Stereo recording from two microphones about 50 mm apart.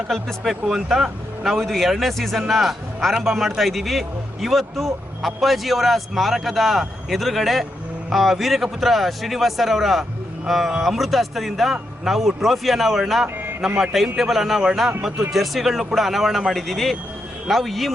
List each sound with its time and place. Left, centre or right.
0.1 s speech: centre
13.2 s a sound: right
14.2 s speech: centre